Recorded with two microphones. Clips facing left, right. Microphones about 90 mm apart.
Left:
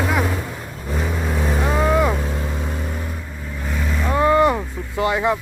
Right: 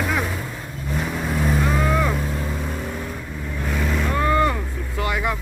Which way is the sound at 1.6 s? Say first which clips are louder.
Left 7 dB; 20° left (ahead or behind).